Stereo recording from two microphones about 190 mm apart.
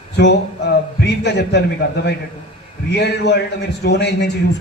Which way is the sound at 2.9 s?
60° left (ahead or behind).